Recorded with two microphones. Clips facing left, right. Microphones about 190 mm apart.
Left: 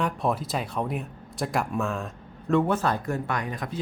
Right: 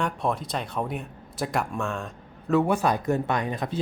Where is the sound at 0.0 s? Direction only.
Centre (ahead or behind).